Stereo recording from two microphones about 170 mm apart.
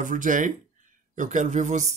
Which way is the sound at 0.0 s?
50° right (ahead or behind).